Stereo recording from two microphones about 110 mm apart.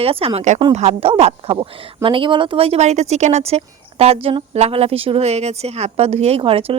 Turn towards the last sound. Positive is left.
turn(degrees=-55)  # may be behind; listen again after turning